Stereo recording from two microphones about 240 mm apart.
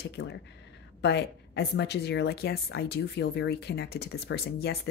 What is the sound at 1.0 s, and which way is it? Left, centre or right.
A woman's voice, left.